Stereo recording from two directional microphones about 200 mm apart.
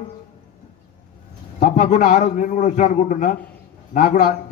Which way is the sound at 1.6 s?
35° left (ahead or behind).